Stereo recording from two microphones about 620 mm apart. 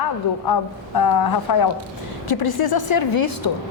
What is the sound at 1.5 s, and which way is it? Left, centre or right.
Speech, left.